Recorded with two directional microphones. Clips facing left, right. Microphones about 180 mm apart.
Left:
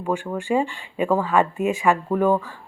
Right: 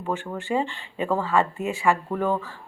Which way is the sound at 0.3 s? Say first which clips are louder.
Left 3 dB; 15° left (ahead or behind).